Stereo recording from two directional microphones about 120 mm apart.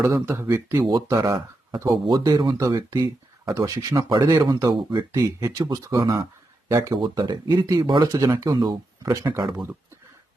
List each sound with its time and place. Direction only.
0.0 s speech: 20° right (ahead or behind); by 5.0 s 40° right (ahead or behind)
5.1 s speech: 25° right (ahead or behind)
7.0 s speech: 40° right (ahead or behind)